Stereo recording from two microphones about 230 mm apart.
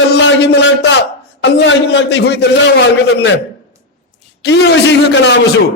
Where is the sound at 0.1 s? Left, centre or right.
Left.